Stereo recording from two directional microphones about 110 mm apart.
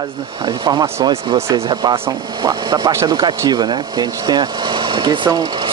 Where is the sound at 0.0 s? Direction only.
50° right (ahead or behind).